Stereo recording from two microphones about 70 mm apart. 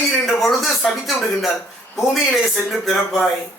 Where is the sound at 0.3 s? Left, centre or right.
Centre.